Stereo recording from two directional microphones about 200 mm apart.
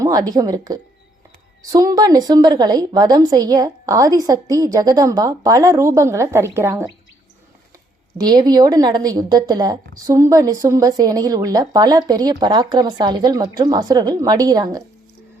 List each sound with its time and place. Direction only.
0.0 s a woman's voice: 20° right (ahead or behind)
8.2 s a woman's voice: 20° right (ahead or behind)